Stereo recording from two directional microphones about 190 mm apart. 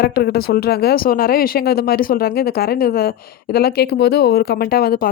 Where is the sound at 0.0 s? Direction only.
55° left (ahead or behind).